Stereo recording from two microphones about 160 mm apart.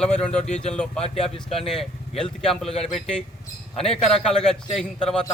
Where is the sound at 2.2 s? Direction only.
Centre (ahead or behind).